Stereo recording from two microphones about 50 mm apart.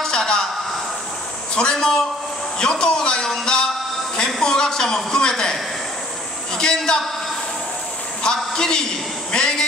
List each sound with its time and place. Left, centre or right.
0.0 s a sound: centre
1.5 s a woman's voice: centre
8.5 s a woman's voice: centre